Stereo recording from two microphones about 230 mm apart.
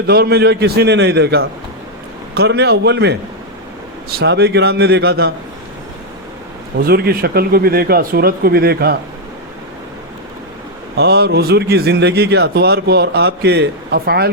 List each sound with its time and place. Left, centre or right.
0.1 s a man's voice: right
6.8 s speech: right
10.9 s a man's voice: right